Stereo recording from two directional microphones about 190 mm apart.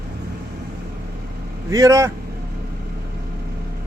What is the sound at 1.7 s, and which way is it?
Speech, 15° right (ahead or behind).